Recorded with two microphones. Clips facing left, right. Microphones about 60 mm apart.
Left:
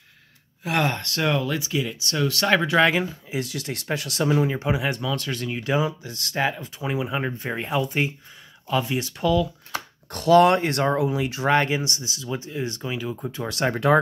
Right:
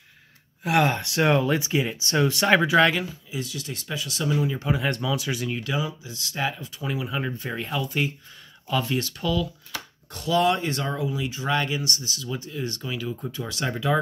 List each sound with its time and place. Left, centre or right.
0.7 s speech: centre
1.0 s speech: centre
2.4 s speech: centre
3.3 s speech: left
4.2 s speech: left
4.7 s speech: centre
5.1 s speech: centre
5.6 s speech: left
6.0 s speech: left
6.3 s speech: left
10.1 s speech: left
11.5 s speech: left
13.3 s speech: left
13.6 s speech: left